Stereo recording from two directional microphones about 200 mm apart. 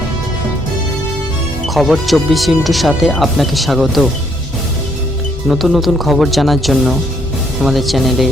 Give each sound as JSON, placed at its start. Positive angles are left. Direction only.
{"t": 1.6, "sound": "speech", "side_deg": 0}
{"t": 5.5, "sound": "speech", "side_deg": 0}